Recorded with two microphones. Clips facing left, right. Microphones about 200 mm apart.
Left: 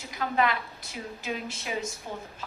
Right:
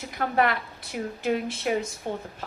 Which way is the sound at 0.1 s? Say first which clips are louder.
Right 2 dB; 55° right (ahead or behind).